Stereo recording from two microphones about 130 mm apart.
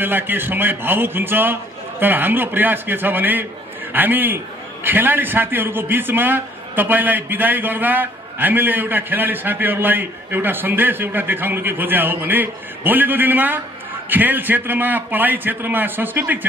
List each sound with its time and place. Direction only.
0.0 s a man's voice: 15° right (ahead or behind)